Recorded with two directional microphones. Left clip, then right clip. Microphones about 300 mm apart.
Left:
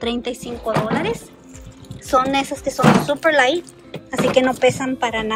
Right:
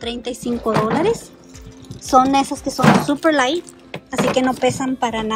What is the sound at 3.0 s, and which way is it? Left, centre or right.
Speech, centre.